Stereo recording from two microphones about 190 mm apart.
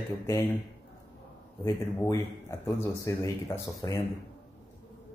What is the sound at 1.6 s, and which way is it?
Speech, 15° left (ahead or behind).